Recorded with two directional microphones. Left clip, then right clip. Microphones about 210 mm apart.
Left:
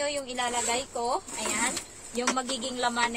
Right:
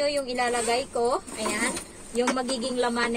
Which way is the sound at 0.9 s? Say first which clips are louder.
Right 4 dB; 30° left (ahead or behind).